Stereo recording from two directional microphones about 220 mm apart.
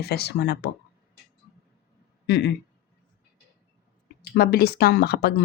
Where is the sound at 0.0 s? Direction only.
45° left (ahead or behind).